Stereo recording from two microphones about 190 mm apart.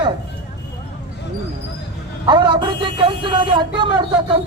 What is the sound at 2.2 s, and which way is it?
Speech, 25° right (ahead or behind).